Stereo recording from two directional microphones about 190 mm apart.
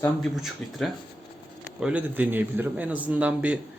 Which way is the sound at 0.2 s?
Centre (ahead or behind).